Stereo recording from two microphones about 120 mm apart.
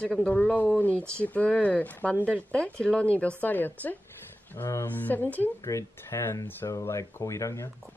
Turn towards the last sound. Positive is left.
turn(degrees=25)  # may be behind; listen again after turning